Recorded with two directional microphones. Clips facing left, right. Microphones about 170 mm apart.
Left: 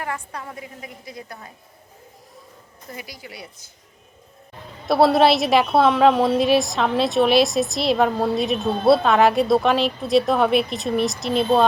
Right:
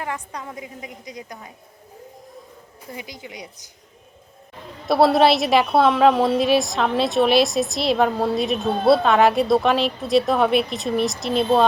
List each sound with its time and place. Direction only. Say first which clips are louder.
0.0 s a woman's voice: even; 15° right (ahead or behind)
2.8 s a woman's voice: right 2 dB; 15° right (ahead or behind)
4.9 s a woman's voice: even; centre (ahead or behind)